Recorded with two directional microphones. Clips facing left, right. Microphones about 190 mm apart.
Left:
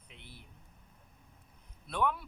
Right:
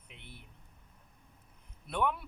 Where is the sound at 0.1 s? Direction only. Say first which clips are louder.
Right 1 dB; 60° right (ahead or behind).